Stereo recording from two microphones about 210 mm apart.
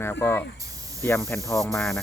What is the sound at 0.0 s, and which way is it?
Speech, 10° left (ahead or behind).